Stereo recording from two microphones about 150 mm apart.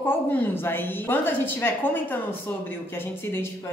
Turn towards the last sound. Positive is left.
turn(degrees=15)  # may be behind; listen again after turning